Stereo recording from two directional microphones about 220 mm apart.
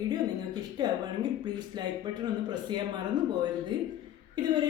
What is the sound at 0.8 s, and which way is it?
Speech, 20° right (ahead or behind).